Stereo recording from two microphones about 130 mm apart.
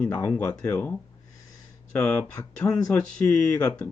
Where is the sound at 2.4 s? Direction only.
30° left (ahead or behind).